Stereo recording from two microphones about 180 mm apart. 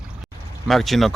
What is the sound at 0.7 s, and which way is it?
Speech, centre (ahead or behind).